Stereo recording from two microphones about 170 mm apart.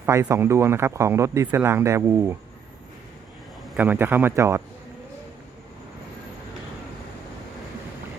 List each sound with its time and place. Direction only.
0.0 s speech: 15° right (ahead or behind)
3.8 s speech: 10° right (ahead or behind)